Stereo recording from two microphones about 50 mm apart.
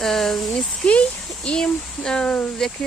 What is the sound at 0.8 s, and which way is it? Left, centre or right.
Speech, centre.